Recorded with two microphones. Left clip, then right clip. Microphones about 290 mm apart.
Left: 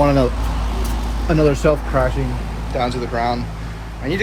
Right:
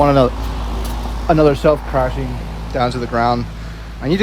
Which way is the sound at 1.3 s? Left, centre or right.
Right.